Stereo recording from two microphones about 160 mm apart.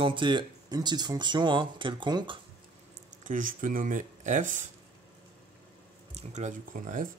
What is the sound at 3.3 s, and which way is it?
Speech, 55° right (ahead or behind).